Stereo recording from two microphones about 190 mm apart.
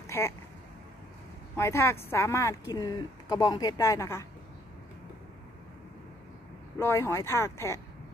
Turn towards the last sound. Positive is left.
turn(degrees=15)  # may be behind; listen again after turning